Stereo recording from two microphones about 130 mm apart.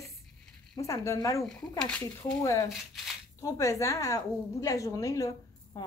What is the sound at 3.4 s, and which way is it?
A woman's voice, 25° left (ahead or behind).